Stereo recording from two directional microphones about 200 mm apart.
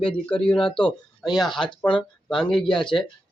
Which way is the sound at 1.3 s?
Centre (ahead or behind).